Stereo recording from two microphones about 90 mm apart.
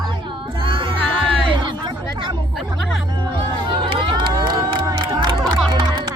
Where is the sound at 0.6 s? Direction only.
70° right (ahead or behind).